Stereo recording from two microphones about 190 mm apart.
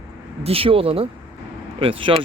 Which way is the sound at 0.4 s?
30° right (ahead or behind).